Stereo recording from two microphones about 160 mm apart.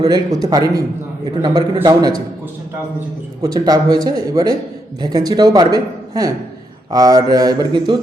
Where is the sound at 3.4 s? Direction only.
25° right (ahead or behind).